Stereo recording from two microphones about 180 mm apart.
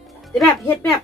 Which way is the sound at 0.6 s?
10° left (ahead or behind).